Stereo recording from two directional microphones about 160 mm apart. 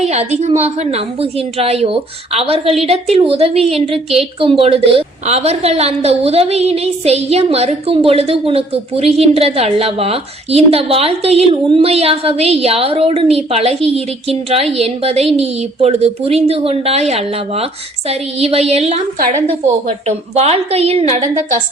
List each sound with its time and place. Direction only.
0.0 s a woman's voice: 45° right (ahead or behind)
3.9 s a woman's voice: centre (ahead or behind)
4.4 s a woman's voice: 35° right (ahead or behind)
20.1 s a woman's voice: 40° right (ahead or behind)